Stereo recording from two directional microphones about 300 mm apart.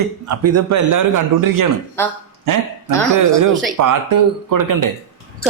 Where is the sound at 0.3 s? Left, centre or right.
Right.